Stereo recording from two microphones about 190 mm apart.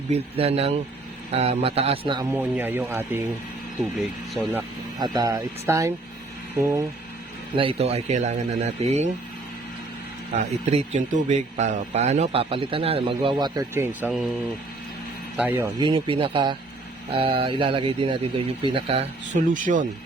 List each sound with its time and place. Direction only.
0.1 s speech: 30° right (ahead or behind)
2.3 s speech: 10° right (ahead or behind)
4.9 s speech: 20° right (ahead or behind)
7.5 s speech: 30° right (ahead or behind)
10.7 s speech: 35° right (ahead or behind); by 14.1 s 10° right (ahead or behind)
15.4 s speech: 10° right (ahead or behind)
15.8 s speech: 25° right (ahead or behind)